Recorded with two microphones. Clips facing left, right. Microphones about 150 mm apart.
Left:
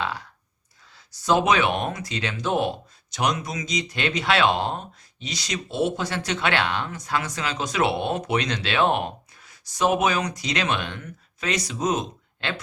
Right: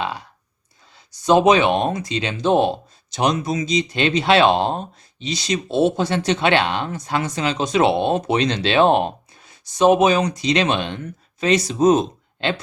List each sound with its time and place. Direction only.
0.0 s speech: 20° right (ahead or behind)